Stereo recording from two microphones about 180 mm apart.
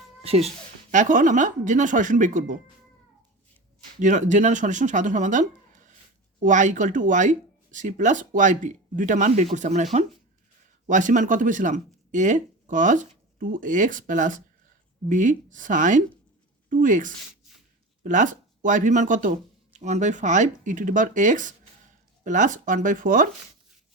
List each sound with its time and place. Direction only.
0.2 s speech: 35° right (ahead or behind)
4.0 s speech: 40° right (ahead or behind)